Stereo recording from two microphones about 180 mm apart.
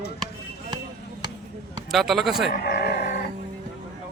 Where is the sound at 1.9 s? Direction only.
Centre (ahead or behind).